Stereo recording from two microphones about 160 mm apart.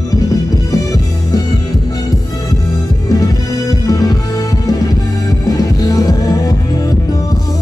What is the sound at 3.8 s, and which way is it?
Music, 25° left (ahead or behind).